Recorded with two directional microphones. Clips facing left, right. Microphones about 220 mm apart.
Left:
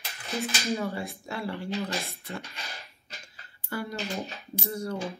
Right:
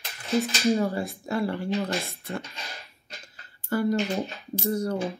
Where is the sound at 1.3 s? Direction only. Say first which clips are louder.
Right 7 dB; 45° right (ahead or behind).